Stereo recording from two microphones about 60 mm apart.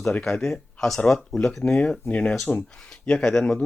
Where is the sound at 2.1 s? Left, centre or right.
Centre.